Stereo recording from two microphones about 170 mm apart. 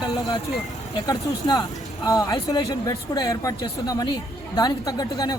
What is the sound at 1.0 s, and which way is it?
Speech, 20° left (ahead or behind).